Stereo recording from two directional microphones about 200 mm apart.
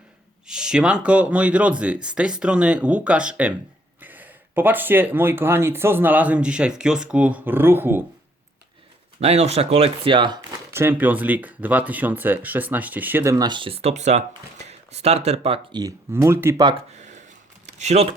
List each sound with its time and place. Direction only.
0.4 s speech: 5° right (ahead or behind)
9.2 s speech: 30° right (ahead or behind); by 16.7 s 15° right (ahead or behind)
16.9 s a sound: 35° right (ahead or behind)